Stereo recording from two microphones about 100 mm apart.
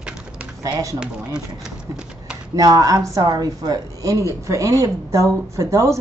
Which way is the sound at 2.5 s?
40° right (ahead or behind).